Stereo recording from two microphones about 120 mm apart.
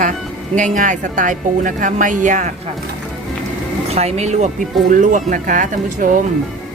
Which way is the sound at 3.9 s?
60° right (ahead or behind).